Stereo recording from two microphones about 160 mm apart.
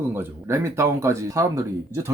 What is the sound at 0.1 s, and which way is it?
Speech, 15° right (ahead or behind).